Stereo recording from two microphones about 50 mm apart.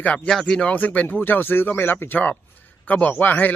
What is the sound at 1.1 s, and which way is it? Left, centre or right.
Speech, left.